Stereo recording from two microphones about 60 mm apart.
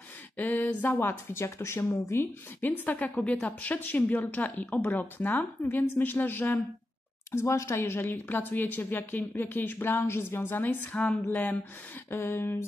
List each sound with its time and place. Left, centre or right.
0.4 s speech: left
1.4 s speech: left
2.8 s speech: left
7.2 s speech: left
12.1 s speech: left